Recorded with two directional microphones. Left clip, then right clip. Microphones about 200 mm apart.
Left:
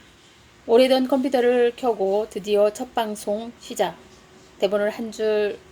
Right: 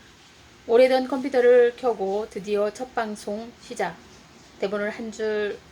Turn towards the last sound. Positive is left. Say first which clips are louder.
# left 4 dB
turn(degrees=40)  # may be behind; listen again after turning